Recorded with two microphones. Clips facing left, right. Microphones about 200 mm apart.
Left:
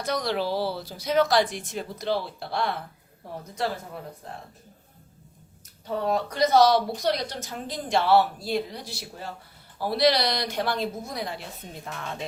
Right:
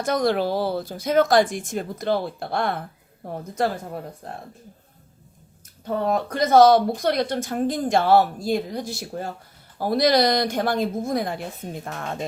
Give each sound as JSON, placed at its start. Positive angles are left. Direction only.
{"t": 0.0, "sound": "speech", "side_deg": -50}
{"t": 5.8, "sound": "speech", "side_deg": -50}